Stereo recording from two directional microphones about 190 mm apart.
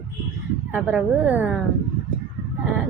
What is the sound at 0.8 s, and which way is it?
Speech, 5° right (ahead or behind).